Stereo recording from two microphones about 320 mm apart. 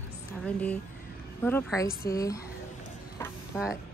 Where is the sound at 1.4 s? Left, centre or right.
Centre.